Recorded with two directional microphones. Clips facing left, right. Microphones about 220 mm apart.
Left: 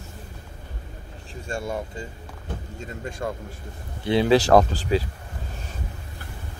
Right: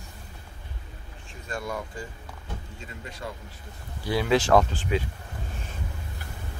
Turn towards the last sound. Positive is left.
turn(degrees=35)  # may be behind; listen again after turning